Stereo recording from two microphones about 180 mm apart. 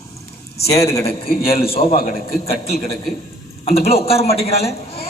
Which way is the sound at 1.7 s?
50° left (ahead or behind).